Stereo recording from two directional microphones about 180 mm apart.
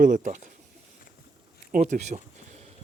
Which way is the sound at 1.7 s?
40° right (ahead or behind).